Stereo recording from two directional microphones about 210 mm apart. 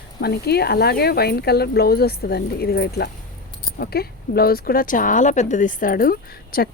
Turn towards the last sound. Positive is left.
turn(degrees=45)  # may be behind; listen again after turning